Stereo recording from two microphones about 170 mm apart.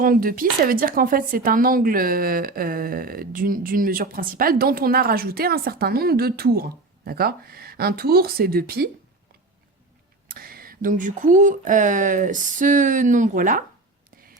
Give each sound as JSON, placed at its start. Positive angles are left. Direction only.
{"t": 0.0, "sound": "speech", "side_deg": -55}
{"t": 10.2, "sound": "speech", "side_deg": -60}